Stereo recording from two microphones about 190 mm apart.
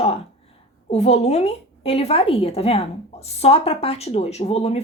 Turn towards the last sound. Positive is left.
turn(degrees=35)  # may be behind; listen again after turning